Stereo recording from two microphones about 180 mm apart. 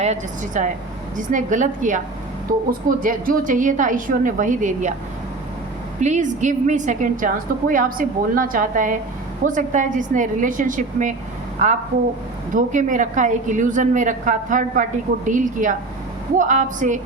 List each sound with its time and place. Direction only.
0.0 s a woman's voice: 40° right (ahead or behind)
6.0 s a woman's voice: 40° right (ahead or behind)